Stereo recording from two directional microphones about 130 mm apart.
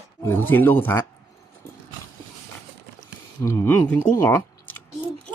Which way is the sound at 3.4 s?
20° left (ahead or behind).